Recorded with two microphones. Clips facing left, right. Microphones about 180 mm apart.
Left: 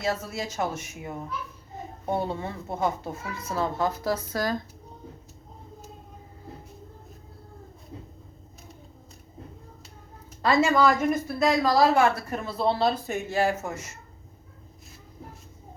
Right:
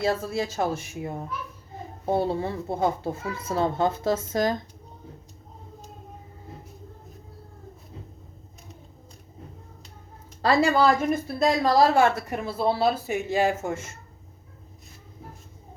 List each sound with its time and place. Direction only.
0.0 s speech: 30° right (ahead or behind)
10.7 s speech: 30° right (ahead or behind)
12.3 s speech: 10° right (ahead or behind)
13.3 s speech: 20° right (ahead or behind)